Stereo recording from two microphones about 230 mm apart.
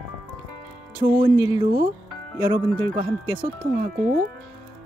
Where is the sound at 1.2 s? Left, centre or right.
Right.